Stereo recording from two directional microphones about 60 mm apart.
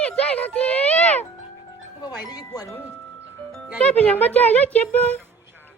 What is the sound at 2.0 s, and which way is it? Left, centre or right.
Speech, left.